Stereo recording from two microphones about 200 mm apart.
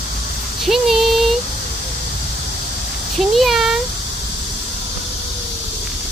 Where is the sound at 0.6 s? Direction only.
Centre (ahead or behind).